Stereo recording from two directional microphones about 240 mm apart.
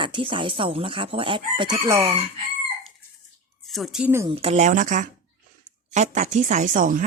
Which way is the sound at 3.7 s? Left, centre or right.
Centre.